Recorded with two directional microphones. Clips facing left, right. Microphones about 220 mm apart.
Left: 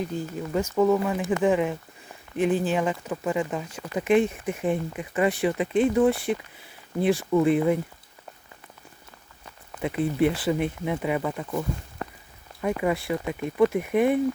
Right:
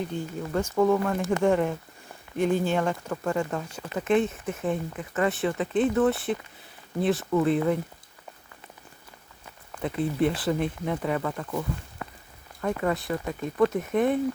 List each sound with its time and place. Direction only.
0.5 s speech: 5° left (ahead or behind)
9.8 s speech: 5° left (ahead or behind)
12.6 s speech: 10° left (ahead or behind)